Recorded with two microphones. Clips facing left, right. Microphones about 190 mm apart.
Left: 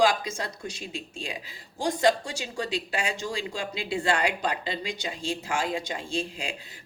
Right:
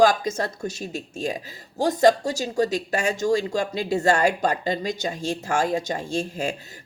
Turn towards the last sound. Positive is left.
turn(degrees=-45)  # may be behind; listen again after turning